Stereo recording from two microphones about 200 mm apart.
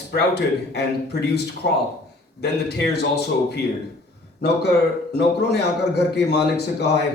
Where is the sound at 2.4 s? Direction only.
55° left (ahead or behind).